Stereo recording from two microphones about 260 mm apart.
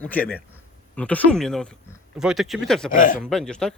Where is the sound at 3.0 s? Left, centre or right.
Left.